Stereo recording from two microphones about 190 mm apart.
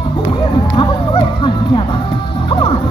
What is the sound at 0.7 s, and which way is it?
Music, 25° left (ahead or behind).